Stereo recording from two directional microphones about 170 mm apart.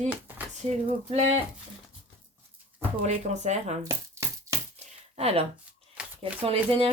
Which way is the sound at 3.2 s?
40° right (ahead or behind).